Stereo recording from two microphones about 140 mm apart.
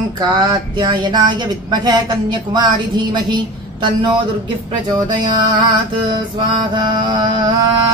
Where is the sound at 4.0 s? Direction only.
35° right (ahead or behind).